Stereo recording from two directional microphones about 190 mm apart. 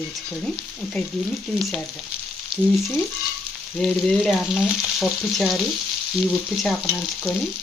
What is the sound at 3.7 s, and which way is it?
Frying, 5° left (ahead or behind).